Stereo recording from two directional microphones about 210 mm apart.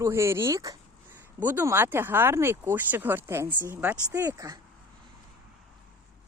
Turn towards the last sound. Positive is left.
turn(degrees=-15)  # may be behind; listen again after turning